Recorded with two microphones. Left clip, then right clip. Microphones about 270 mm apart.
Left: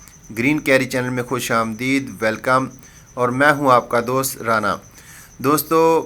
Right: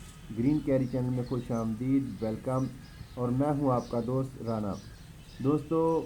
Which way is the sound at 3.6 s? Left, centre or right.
Left.